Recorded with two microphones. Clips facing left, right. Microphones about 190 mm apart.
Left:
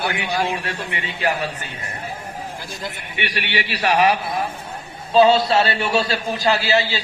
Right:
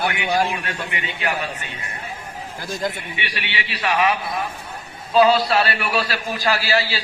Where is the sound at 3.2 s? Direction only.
45° left (ahead or behind).